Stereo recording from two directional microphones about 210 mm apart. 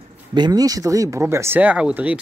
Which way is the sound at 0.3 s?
20° right (ahead or behind).